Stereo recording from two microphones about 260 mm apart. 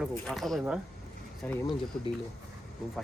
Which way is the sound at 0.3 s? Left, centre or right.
Centre.